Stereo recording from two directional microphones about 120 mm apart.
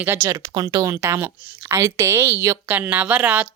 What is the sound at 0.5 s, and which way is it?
Speech, 30° right (ahead or behind).